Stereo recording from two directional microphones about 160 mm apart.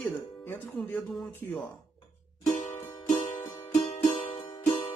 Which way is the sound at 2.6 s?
55° left (ahead or behind).